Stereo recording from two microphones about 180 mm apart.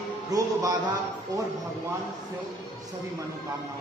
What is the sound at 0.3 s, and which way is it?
Speech, 20° right (ahead or behind).